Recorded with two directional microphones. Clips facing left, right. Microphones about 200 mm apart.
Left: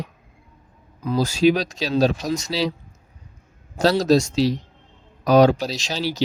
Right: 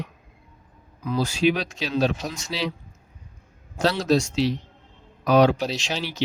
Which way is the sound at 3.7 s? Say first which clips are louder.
Left 4 dB; 40° left (ahead or behind).